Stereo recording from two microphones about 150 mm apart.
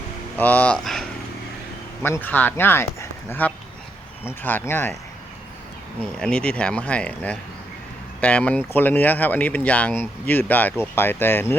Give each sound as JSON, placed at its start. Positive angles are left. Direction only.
{"t": 0.3, "sound": "speech", "side_deg": 10}
{"t": 2.0, "sound": "speech", "side_deg": 15}
{"t": 6.0, "sound": "speech", "side_deg": 5}